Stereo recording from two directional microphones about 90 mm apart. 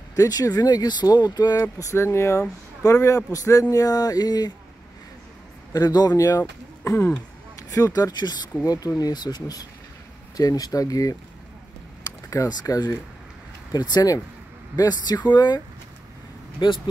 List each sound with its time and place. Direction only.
0.1 s speech: 45° left (ahead or behind)
1.8 s speech: 35° left (ahead or behind)
5.7 s speech: 45° left (ahead or behind); by 7.2 s 30° left (ahead or behind)
7.7 s speech: 40° left (ahead or behind)
12.3 s speech: 40° left (ahead or behind); by 16.9 s 55° left (ahead or behind)